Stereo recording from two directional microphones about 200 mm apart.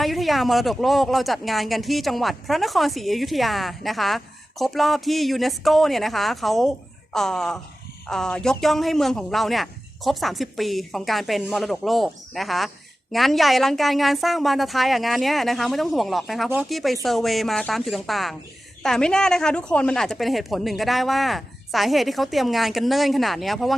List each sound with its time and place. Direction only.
0.0 s speech: centre (ahead or behind)